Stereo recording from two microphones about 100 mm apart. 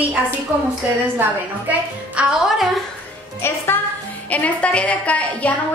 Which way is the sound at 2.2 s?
10° right (ahead or behind).